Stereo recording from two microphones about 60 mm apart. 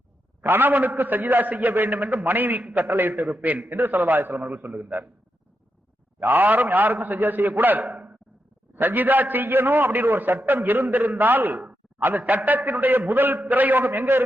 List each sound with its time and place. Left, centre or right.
0.4 s a man's voice: right
4.5 s a man's voice: centre
4.8 s a man's voice: right
6.1 s a man's voice: right
7.9 s a sound: centre
8.7 s a man's voice: right